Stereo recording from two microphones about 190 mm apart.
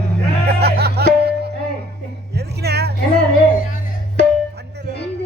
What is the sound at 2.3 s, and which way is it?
Music, 60° right (ahead or behind).